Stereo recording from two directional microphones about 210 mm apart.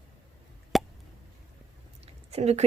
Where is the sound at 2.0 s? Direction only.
30° right (ahead or behind).